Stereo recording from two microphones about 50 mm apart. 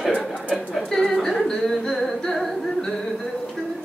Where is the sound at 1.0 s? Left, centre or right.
Centre.